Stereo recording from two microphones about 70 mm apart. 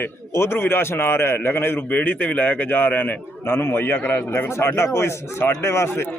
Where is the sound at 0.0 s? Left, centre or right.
Left.